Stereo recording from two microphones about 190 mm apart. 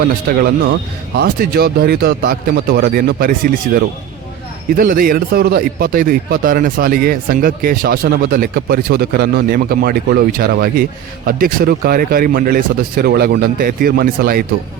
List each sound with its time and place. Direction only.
0.3 s speech: 50° right (ahead or behind)